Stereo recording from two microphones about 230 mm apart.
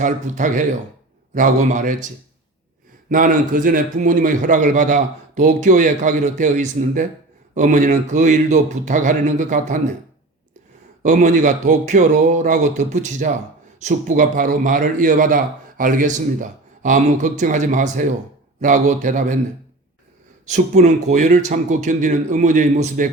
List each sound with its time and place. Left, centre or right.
0.0 s a man's voice: right
3.1 s a man's voice: right
11.0 s a man's voice: right
20.5 s a man's voice: right